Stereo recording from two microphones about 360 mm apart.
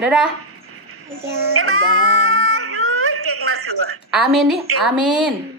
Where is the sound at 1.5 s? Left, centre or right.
Right.